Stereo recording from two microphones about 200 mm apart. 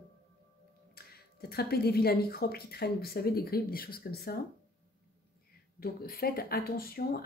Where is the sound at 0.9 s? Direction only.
50° left (ahead or behind).